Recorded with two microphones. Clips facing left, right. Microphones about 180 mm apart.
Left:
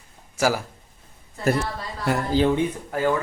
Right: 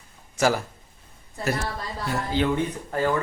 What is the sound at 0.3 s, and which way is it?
Speech, 5° left (ahead or behind).